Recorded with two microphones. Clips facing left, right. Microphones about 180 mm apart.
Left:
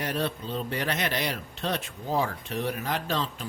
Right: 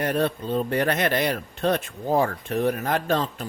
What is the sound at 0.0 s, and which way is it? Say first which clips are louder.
Speech: right 6 dB; 55° right (ahead or behind).